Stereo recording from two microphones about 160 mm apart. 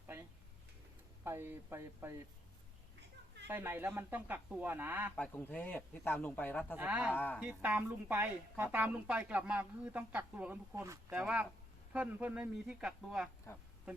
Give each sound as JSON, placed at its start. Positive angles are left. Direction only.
{"t": 1.2, "sound": "a woman's voice", "side_deg": -15}
{"t": 3.5, "sound": "a woman's voice", "side_deg": -15}
{"t": 5.1, "sound": "speech", "side_deg": 10}
{"t": 6.7, "sound": "a woman's voice", "side_deg": -10}